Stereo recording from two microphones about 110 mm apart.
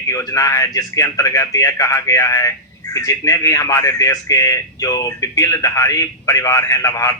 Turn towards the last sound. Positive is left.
turn(degrees=35)  # may be behind; listen again after turning